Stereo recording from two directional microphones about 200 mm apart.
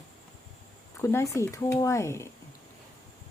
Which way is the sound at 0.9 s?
15° left (ahead or behind).